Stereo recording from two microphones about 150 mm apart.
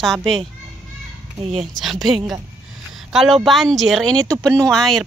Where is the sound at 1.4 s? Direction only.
45° right (ahead or behind).